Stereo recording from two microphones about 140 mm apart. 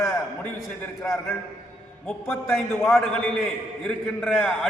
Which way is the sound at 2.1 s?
15° left (ahead or behind).